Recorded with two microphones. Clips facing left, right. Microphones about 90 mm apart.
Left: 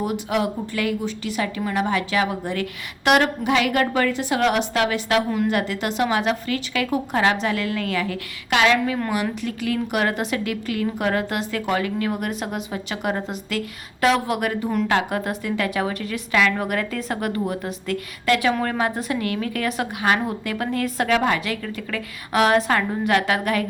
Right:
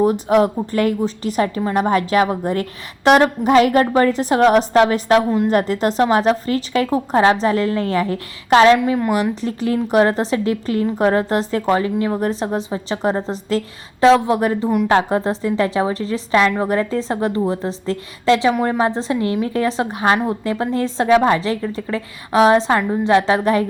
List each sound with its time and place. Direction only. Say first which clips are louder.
0.0 s a woman's voice: right 8 dB; 40° right (ahead or behind)
8.8 s a woman's voice: right 6 dB; 15° right (ahead or behind)
9.3 s a woman's voice: right 5 dB; 35° right (ahead or behind)